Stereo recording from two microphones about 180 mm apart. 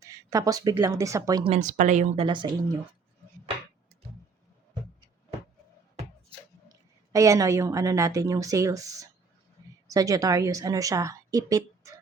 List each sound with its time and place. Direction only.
0.0 s speech: 20° right (ahead or behind)
1.5 s speech: 40° right (ahead or behind)
2.2 s speech: 25° right (ahead or behind)
7.1 s a woman's voice: 20° right (ahead or behind)